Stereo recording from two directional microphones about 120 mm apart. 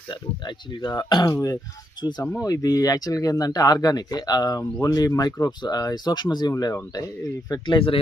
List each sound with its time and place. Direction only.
0.1 s speech: 40° left (ahead or behind)